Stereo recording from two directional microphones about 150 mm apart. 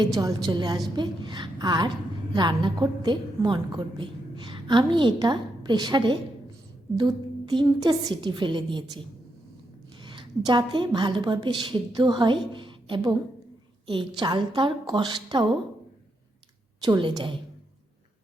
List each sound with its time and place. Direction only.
0.0 s a woman's voice: 25° right (ahead or behind)
14.2 s a woman's voice: 30° right (ahead or behind)
16.8 s a woman's voice: 30° right (ahead or behind)